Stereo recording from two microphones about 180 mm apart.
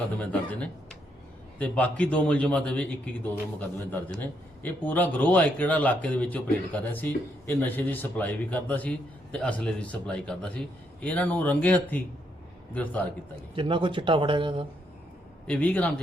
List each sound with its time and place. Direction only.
0.3 s a man's voice: 5° left (ahead or behind)
13.6 s speech: 25° right (ahead or behind)
15.4 s a man's voice: 10° left (ahead or behind)